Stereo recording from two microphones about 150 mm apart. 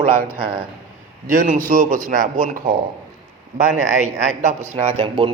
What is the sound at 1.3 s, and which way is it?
Speech, 55° right (ahead or behind).